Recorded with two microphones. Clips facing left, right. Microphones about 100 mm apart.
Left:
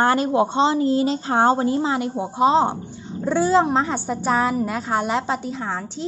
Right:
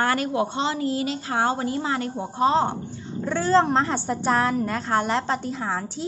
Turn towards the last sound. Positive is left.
turn(degrees=0)  # may be behind; listen again after turning